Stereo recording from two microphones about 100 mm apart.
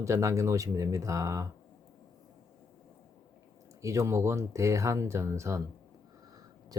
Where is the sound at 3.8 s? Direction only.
30° right (ahead or behind).